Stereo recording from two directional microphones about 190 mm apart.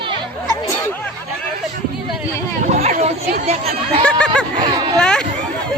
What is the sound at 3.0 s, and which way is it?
Speech, 35° right (ahead or behind).